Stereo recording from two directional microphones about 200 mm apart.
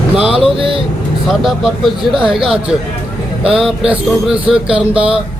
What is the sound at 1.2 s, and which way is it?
Speech, centre (ahead or behind).